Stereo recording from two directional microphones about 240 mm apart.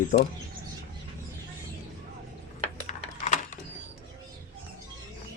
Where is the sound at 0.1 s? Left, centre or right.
Left.